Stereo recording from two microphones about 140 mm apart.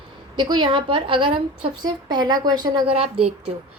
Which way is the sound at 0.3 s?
35° right (ahead or behind).